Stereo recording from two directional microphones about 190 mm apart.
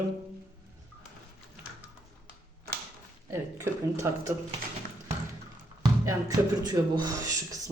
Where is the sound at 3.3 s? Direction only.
15° right (ahead or behind).